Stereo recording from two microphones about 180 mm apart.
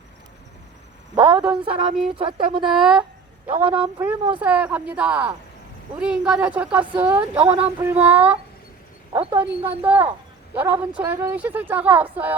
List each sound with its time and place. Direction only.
1.1 s a sound: 25° right (ahead or behind)
1.6 s a woman's voice: 30° right (ahead or behind)
2.6 s speech: centre (ahead or behind)
3.4 s speech: 30° right (ahead or behind)
4.4 s a woman's voice: 10° right (ahead or behind)
7.4 s speech: 30° right (ahead or behind)
7.8 s a woman's voice: 10° right (ahead or behind)
9.1 s a woman's voice: 30° right (ahead or behind)
9.8 s a woman's voice: 10° right (ahead or behind)